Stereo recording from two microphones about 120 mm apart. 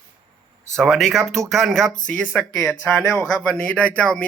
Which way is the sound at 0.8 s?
Centre (ahead or behind).